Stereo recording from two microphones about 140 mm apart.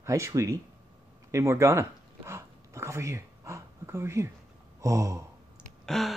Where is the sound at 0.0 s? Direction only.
20° right (ahead or behind).